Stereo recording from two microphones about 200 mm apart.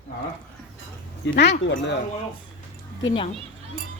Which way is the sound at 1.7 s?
60° left (ahead or behind).